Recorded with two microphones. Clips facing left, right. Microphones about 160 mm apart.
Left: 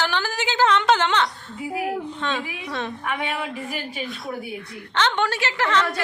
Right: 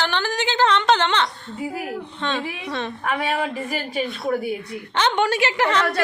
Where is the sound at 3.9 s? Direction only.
60° right (ahead or behind).